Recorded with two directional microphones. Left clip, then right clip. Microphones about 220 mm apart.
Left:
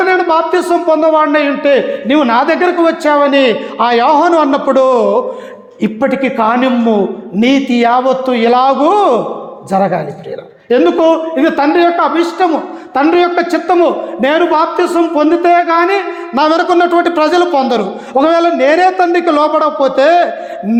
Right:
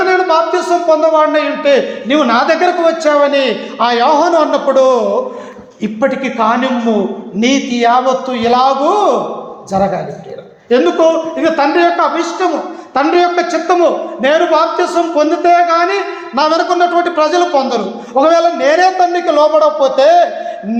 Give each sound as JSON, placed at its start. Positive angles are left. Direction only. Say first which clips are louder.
{"t": 0.0, "sound": "a man's voice", "louder": "even", "side_deg": 40}